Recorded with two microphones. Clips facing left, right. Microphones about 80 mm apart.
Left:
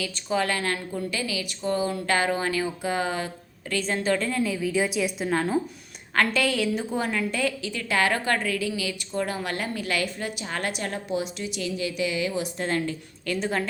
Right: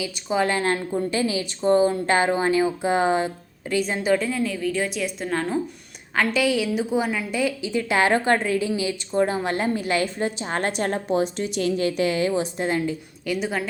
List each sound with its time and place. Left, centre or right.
0.0 s a woman's voice: centre
6.1 s a woman's voice: centre; by 12.3 s right
12.3 s a woman's voice: right
12.6 s a woman's voice: centre